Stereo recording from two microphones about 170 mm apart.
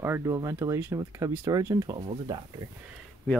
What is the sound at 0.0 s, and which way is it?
Speech, 15° right (ahead or behind).